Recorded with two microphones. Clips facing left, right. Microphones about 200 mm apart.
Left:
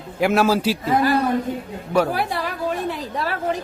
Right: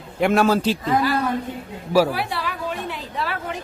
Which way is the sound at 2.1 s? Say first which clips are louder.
Left 2 dB; 45° left (ahead or behind).